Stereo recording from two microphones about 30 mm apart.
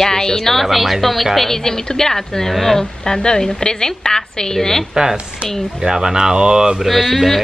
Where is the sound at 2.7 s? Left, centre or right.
Left.